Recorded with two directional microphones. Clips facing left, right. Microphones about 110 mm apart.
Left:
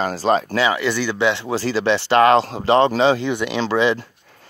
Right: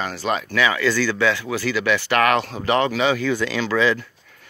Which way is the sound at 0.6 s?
20° left (ahead or behind).